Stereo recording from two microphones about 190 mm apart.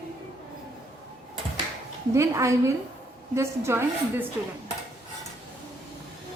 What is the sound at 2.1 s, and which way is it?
A woman's voice, 15° right (ahead or behind).